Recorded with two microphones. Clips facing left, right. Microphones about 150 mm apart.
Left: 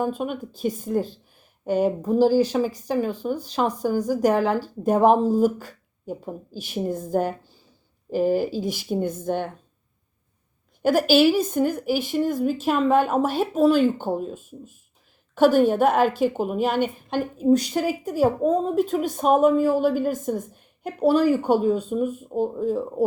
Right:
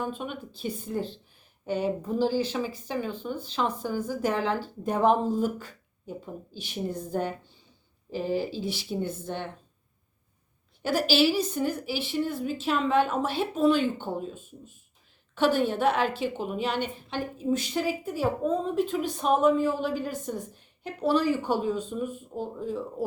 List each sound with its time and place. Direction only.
0.0 s a woman's voice: 45° left (ahead or behind)
10.8 s a woman's voice: 50° left (ahead or behind)